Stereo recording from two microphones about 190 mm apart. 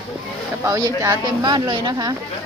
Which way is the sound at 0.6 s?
15° right (ahead or behind).